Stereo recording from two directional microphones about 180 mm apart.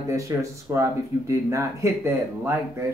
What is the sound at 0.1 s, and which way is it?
Speech, 15° right (ahead or behind).